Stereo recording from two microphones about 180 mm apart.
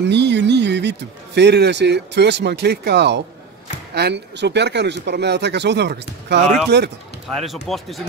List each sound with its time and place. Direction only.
0.0 s speech: 75° right (ahead or behind)
7.6 s speech: centre (ahead or behind)